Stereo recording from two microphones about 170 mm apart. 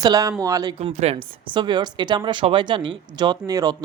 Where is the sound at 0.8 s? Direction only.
35° right (ahead or behind).